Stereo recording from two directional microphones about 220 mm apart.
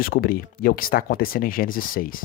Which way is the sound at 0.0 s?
40° left (ahead or behind).